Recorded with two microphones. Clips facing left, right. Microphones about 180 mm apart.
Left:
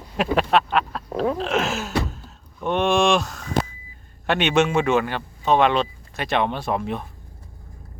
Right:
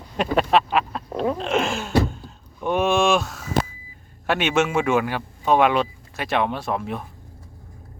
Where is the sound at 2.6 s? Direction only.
5° right (ahead or behind).